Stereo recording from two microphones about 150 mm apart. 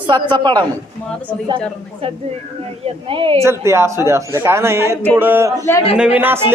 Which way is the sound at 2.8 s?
35° right (ahead or behind).